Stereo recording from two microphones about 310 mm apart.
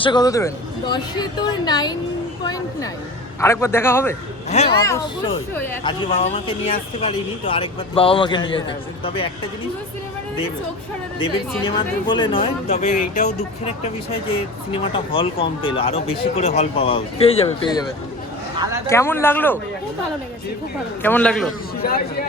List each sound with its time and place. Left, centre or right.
0.0 s speech: centre
4.4 s speech: centre
11.2 s speech: centre
18.9 s speech: centre
21.0 s a man's voice: centre
21.8 s speech: left